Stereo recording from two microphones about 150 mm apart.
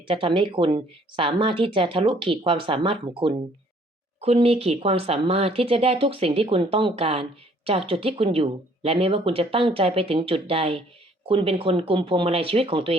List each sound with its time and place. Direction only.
0.1 s speech: 35° right (ahead or behind)